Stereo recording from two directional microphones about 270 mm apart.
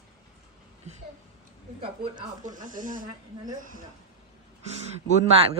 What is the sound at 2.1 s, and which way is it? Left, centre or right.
Speech, right.